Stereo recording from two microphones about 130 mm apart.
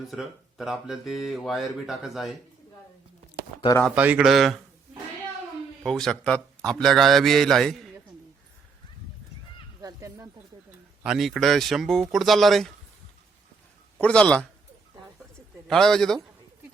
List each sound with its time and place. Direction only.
0.1 s a man's voice: centre (ahead or behind)
3.8 s a man's voice: 10° right (ahead or behind)
5.8 s a man's voice: 5° left (ahead or behind)
9.8 s a sound: 25° right (ahead or behind)
11.0 s a man's voice: 5° right (ahead or behind)
14.0 s a man's voice: 10° left (ahead or behind)
15.6 s a man's voice: 5° left (ahead or behind)